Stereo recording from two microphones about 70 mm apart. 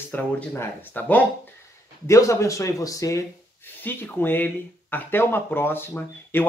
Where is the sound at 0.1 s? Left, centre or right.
Left.